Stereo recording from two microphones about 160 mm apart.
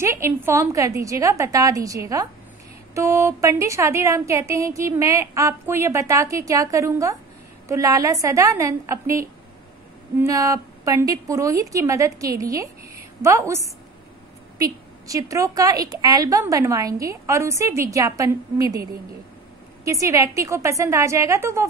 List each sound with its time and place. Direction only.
0.0 s a woman's voice: 15° right (ahead or behind)
14.6 s a woman's voice: 20° right (ahead or behind)
19.8 s a woman's voice: 20° right (ahead or behind)